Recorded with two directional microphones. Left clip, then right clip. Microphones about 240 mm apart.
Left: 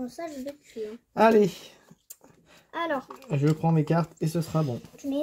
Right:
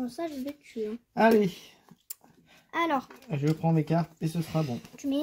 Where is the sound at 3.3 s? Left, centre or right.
Left.